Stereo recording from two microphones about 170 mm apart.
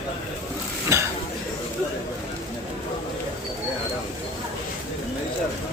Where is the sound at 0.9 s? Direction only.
15° right (ahead or behind).